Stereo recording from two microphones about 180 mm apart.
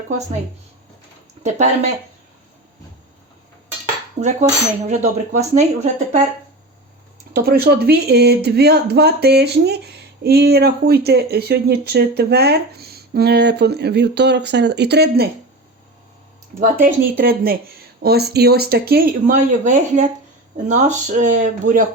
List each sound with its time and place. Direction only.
4.2 s cutlery: 40° right (ahead or behind)
7.3 s speech: 60° right (ahead or behind)
16.6 s speech: 50° right (ahead or behind)